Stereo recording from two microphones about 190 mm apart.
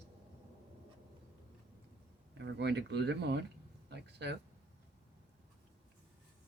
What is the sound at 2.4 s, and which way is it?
Speech, 65° right (ahead or behind).